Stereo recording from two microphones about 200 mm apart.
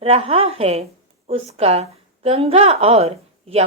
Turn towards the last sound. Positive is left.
turn(degrees=-30)  # may be behind; listen again after turning